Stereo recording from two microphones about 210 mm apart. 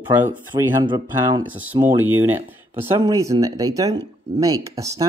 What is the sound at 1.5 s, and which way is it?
Speech, 10° right (ahead or behind).